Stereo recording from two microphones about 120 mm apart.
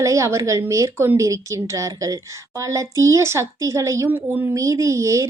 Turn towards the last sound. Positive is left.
turn(degrees=-25)  # may be behind; listen again after turning